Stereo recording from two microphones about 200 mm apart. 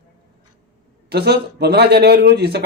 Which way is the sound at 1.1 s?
55° right (ahead or behind).